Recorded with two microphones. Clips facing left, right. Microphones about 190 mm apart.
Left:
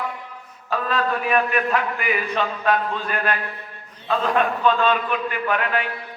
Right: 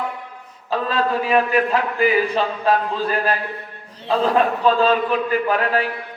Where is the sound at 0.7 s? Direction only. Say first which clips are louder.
Right 3 dB; 30° right (ahead or behind).